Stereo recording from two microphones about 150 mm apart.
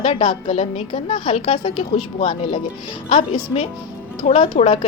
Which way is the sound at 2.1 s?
45° left (ahead or behind).